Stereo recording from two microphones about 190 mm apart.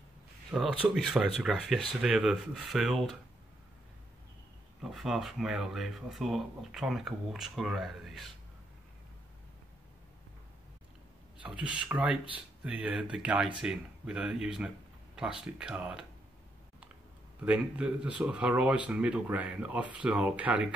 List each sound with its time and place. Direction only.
0.5 s speech: 5° right (ahead or behind)
4.8 s speech: centre (ahead or behind)
11.4 s speech: 5° right (ahead or behind)
17.4 s speech: 5° right (ahead or behind)